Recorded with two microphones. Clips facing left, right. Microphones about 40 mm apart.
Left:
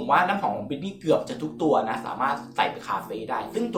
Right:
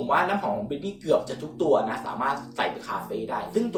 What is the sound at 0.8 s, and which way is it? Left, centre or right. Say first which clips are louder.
Speech: left 1 dB; left.